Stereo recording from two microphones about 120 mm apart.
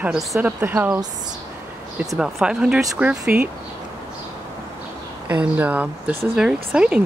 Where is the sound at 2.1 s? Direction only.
5° right (ahead or behind).